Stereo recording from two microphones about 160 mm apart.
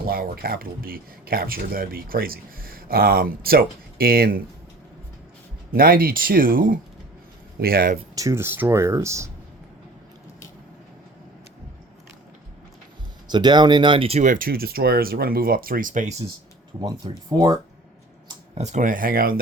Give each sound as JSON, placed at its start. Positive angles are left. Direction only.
{"t": 0.0, "sound": "speech", "side_deg": -70}
{"t": 5.7, "sound": "speech", "side_deg": -65}
{"t": 8.1, "sound": "speech", "side_deg": -20}
{"t": 13.2, "sound": "speech", "side_deg": -25}
{"t": 16.8, "sound": "speech", "side_deg": -25}
{"t": 18.5, "sound": "speech", "side_deg": -50}